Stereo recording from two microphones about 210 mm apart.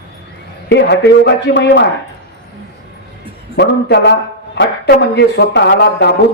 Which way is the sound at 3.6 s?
55° left (ahead or behind).